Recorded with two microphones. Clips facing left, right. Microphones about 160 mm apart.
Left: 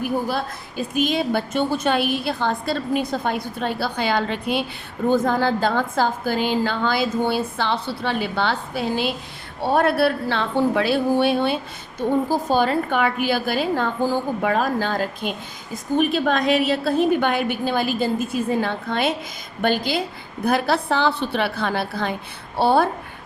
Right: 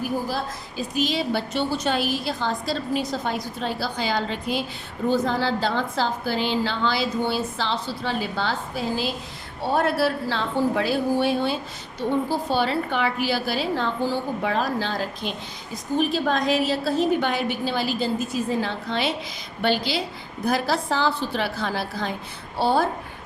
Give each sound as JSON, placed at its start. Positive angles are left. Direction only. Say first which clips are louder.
{"t": 0.3, "sound": "a woman's voice", "louder": "left 3 dB", "side_deg": 60}
{"t": 5.0, "sound": "a woman's voice", "louder": "left 3 dB", "side_deg": 50}
{"t": 11.9, "sound": "a woman's voice", "louder": "left 3 dB", "side_deg": 45}
{"t": 15.7, "sound": "a woman's voice", "louder": "left 3 dB", "side_deg": 60}
{"t": 20.4, "sound": "a woman's voice", "louder": "left 3 dB", "side_deg": 60}